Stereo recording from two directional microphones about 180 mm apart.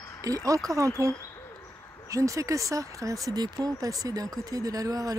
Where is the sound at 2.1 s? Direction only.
15° right (ahead or behind).